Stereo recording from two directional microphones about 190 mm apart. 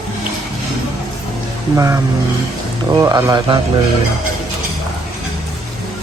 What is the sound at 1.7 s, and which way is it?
Speech, 15° right (ahead or behind).